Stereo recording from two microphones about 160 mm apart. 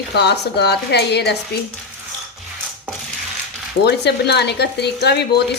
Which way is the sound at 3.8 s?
90° left.